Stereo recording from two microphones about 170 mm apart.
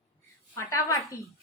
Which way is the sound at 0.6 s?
20° left (ahead or behind).